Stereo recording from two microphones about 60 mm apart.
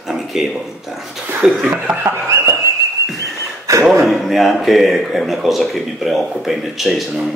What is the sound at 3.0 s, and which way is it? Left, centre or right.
Whistling, right.